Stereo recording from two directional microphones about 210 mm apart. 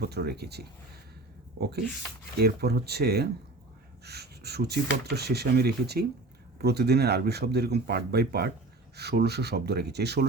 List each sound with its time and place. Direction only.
0.0 s speech: 50° right (ahead or behind)